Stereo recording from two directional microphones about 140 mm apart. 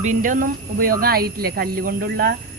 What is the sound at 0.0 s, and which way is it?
Speech, 65° right (ahead or behind).